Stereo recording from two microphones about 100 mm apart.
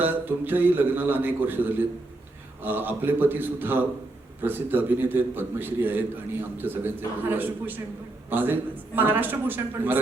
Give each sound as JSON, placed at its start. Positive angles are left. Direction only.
{"t": 0.0, "sound": "a man's voice", "side_deg": -20}